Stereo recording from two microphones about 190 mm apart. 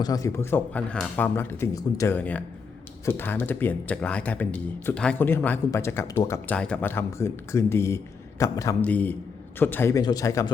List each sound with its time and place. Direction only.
0.0 s speech: 20° left (ahead or behind)